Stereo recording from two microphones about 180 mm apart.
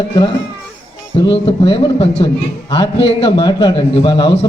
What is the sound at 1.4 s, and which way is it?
Speech, 30° left (ahead or behind).